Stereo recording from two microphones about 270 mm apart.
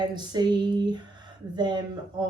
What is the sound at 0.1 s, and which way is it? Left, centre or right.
Speech, centre.